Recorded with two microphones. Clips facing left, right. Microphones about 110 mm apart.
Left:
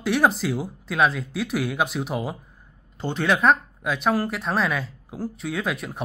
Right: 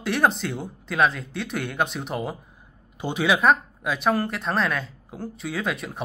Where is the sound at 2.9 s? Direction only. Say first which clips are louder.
Even; 10° right (ahead or behind).